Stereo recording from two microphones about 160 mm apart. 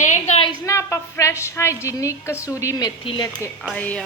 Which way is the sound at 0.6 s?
20° left (ahead or behind).